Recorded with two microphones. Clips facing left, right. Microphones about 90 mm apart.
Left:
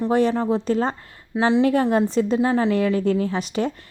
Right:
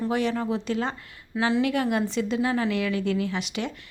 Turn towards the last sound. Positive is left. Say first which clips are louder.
# left 6 dB
turn(degrees=40)  # may be behind; listen again after turning